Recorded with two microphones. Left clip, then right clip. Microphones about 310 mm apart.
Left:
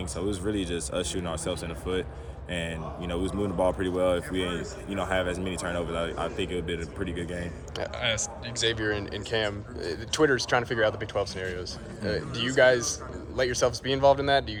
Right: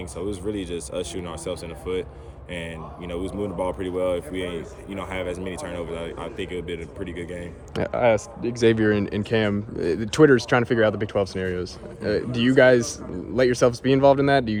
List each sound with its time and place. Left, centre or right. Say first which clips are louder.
0.2 s speech: right 1 dB; centre
7.8 s speech: right 9 dB; centre